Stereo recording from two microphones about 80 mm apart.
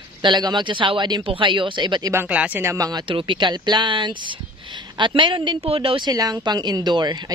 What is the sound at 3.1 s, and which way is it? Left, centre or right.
Speech, right.